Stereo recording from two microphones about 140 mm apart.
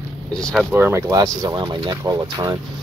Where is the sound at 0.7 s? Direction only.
15° right (ahead or behind).